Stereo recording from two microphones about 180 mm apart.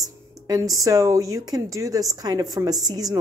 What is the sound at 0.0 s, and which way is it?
A woman's voice, 20° right (ahead or behind).